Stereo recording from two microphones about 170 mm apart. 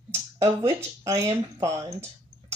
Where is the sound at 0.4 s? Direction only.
15° right (ahead or behind).